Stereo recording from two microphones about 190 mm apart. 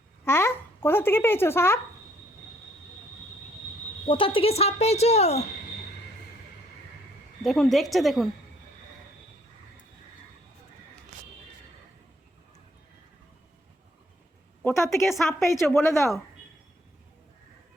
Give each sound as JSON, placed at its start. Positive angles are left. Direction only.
{"t": 0.3, "sound": "a child's voice", "side_deg": 15}
{"t": 4.0, "sound": "speech", "side_deg": 30}
{"t": 7.4, "sound": "a woman's voice", "side_deg": 0}
{"t": 14.6, "sound": "a sound", "side_deg": 15}
{"t": 14.9, "sound": "speech", "side_deg": 15}